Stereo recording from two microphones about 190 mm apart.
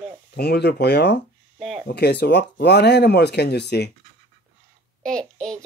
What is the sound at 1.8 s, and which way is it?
Speech, 60° left (ahead or behind).